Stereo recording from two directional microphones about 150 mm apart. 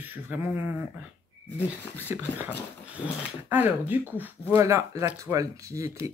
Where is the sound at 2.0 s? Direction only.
10° right (ahead or behind).